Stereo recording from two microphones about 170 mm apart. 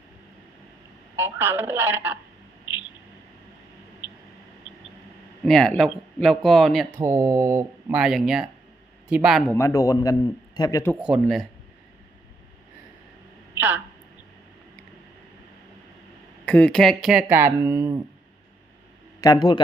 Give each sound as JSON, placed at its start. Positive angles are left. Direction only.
{"t": 1.1, "sound": "speech", "side_deg": -15}
{"t": 5.5, "sound": "speech", "side_deg": 5}
{"t": 7.0, "sound": "speech", "side_deg": -15}
{"t": 7.9, "sound": "speech", "side_deg": 0}
{"t": 9.5, "sound": "speech", "side_deg": 15}
{"t": 11.0, "sound": "speech", "side_deg": -5}
{"t": 13.6, "sound": "a sound", "side_deg": -10}
{"t": 16.5, "sound": "speech", "side_deg": 5}
{"t": 19.2, "sound": "speech", "side_deg": 25}